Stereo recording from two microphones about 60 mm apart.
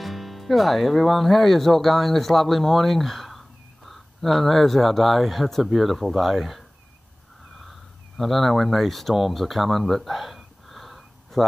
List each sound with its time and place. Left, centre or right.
0.0 s speech: centre
8.2 s speech: centre